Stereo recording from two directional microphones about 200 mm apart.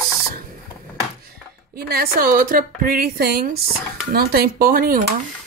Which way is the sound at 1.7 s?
50° right (ahead or behind).